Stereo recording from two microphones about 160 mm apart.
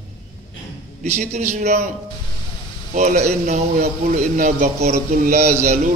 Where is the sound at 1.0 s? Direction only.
45° right (ahead or behind).